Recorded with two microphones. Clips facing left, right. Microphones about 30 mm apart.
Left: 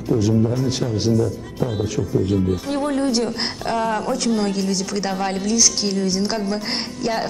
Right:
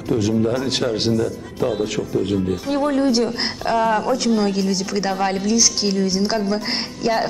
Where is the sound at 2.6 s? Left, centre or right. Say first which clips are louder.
Right 2 dB; centre.